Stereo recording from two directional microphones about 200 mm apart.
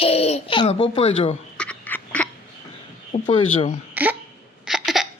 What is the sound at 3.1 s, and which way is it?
Speech, 30° left (ahead or behind).